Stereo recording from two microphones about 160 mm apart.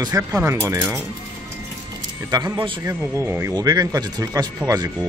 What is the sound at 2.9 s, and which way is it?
Speech, 15° right (ahead or behind).